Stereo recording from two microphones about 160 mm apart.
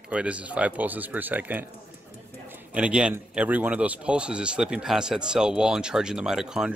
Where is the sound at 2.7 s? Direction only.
5° right (ahead or behind).